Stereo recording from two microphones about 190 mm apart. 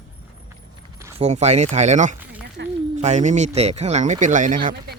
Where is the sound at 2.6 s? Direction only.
65° right (ahead or behind).